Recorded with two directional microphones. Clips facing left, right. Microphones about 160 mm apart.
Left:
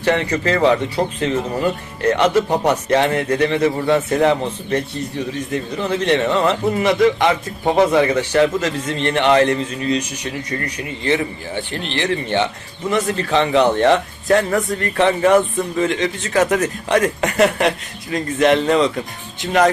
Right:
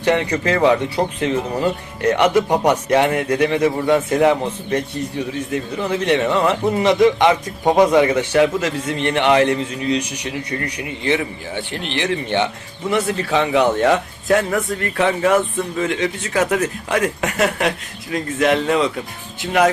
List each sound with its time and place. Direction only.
0.0 s speech: 10° right (ahead or behind)